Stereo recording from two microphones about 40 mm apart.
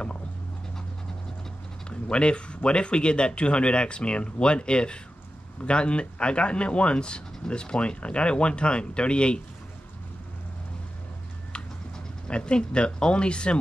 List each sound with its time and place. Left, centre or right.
1.9 s speech: left
12.3 s speech: left